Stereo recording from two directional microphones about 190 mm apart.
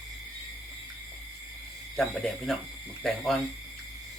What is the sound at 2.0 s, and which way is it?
Speech, centre (ahead or behind).